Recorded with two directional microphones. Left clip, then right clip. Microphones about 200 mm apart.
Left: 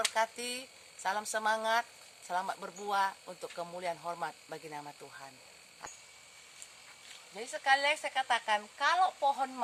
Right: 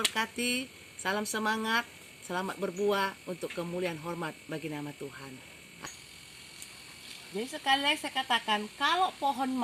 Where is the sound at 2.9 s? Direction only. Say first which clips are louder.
Right 1 dB; 30° left (ahead or behind).